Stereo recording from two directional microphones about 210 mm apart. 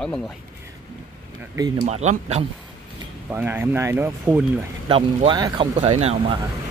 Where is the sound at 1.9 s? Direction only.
30° right (ahead or behind).